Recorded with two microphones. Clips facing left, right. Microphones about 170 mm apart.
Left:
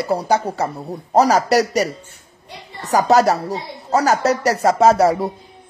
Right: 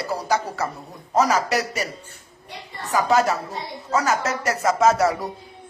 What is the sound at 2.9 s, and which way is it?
Speech, 40° left (ahead or behind).